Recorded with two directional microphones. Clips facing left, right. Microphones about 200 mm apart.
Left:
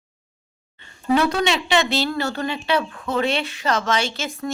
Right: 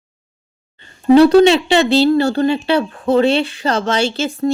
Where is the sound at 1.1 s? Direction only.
35° right (ahead or behind).